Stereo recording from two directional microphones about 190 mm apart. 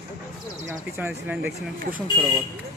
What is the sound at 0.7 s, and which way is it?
Speech, 10° right (ahead or behind).